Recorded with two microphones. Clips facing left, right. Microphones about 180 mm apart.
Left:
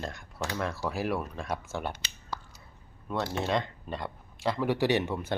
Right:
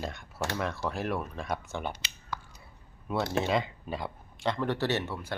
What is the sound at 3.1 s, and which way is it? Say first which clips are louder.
Speech: right 1 dB; 5° right (ahead or behind).